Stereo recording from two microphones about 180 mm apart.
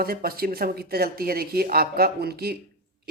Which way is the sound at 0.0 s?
55° right (ahead or behind).